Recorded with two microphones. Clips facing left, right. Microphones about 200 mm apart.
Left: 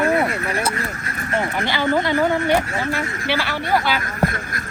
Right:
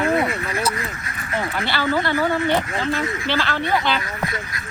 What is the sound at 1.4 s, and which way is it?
Speech, 15° left (ahead or behind).